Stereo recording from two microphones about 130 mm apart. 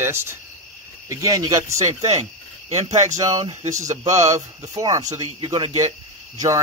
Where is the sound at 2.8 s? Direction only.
60° right (ahead or behind).